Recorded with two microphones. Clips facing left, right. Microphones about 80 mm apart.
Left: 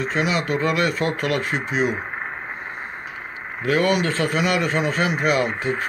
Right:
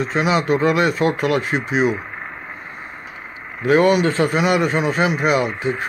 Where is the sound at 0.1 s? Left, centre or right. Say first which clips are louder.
Right 6 dB; centre.